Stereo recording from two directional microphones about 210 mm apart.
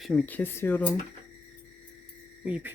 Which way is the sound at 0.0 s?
Centre (ahead or behind).